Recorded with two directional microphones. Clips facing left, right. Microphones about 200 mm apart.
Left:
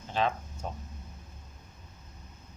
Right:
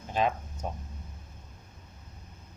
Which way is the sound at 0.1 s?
15° right (ahead or behind).